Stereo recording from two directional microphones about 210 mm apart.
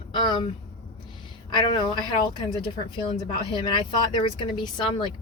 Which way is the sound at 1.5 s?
20° left (ahead or behind).